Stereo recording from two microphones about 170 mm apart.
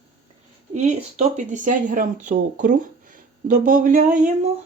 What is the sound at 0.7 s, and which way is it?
Speech, 45° right (ahead or behind).